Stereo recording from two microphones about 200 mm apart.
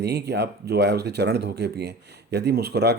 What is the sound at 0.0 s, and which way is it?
Speech, 55° right (ahead or behind).